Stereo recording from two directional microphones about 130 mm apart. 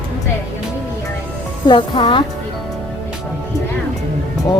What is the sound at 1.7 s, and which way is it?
Speech, 40° left (ahead or behind).